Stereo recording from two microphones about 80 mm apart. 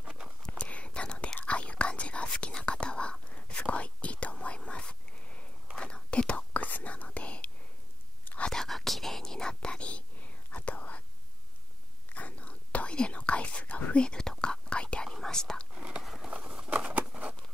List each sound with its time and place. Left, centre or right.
0.5 s whispering: centre
8.5 s whispering: centre
12.1 s whispering: centre
15.7 s whispering: centre
16.0 s a sound: centre
16.3 s a sound: centre